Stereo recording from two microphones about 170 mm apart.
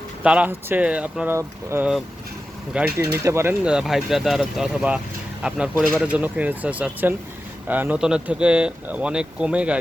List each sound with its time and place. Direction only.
0.2 s speech: 10° right (ahead or behind)